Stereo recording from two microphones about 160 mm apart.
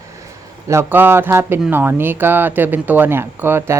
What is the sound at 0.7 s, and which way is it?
Speech, 15° right (ahead or behind).